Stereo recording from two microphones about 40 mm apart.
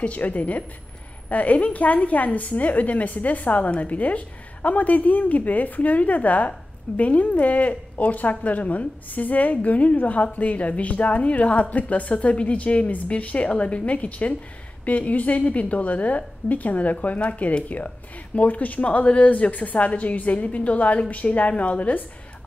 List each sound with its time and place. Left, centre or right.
0.0 s a woman's voice: left